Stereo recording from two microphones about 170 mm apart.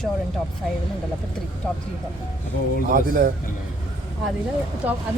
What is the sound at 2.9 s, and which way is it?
Speech, 55° right (ahead or behind).